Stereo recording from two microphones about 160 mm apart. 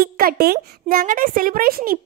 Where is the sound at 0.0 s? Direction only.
70° right (ahead or behind).